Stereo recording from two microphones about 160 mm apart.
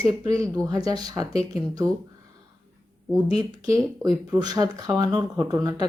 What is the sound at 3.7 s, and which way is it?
Speech, 20° right (ahead or behind).